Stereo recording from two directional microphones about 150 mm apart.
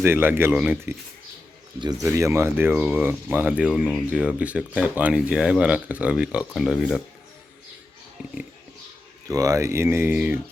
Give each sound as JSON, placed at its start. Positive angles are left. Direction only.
{"t": 0.0, "sound": "speech", "side_deg": -15}
{"t": 2.0, "sound": "speech", "side_deg": -20}
{"t": 9.2, "sound": "speech", "side_deg": -20}